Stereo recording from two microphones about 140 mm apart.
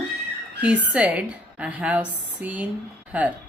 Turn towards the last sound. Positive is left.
turn(degrees=-10)  # may be behind; listen again after turning